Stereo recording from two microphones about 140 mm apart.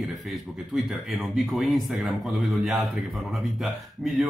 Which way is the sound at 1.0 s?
Centre (ahead or behind).